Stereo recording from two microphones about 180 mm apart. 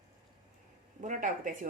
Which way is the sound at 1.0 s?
45° right (ahead or behind).